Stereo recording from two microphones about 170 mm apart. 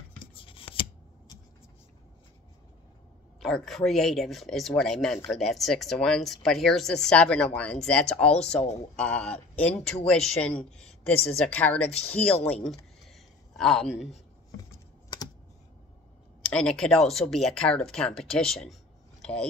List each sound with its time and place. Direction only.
0.3 s scissors: 30° left (ahead or behind)
3.3 s speech: centre (ahead or behind)
12.6 s a sound: centre (ahead or behind)
14.6 s typing: 20° left (ahead or behind)
16.4 s speech: 5° left (ahead or behind)